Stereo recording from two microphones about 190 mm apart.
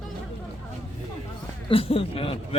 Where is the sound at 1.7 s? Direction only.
30° left (ahead or behind).